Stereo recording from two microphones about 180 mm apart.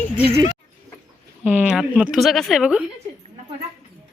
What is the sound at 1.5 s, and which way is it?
Speech, 5° right (ahead or behind).